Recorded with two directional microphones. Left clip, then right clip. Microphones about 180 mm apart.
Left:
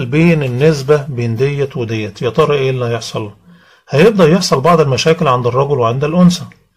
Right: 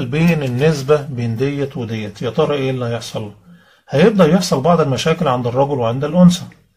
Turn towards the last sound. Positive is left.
turn(degrees=45)  # may be behind; listen again after turning